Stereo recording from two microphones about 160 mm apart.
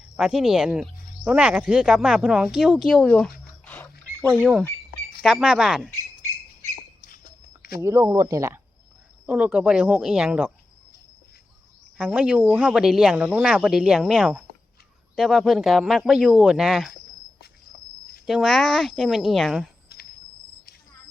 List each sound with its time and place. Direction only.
0.2 s speech: centre (ahead or behind)
3.7 s wild animals: 10° left (ahead or behind)
5.2 s speech: centre (ahead or behind)
7.8 s speech: 20° right (ahead or behind)
9.2 s speech: 10° right (ahead or behind)
11.9 s speech: 5° right (ahead or behind)
18.3 s speech: centre (ahead or behind)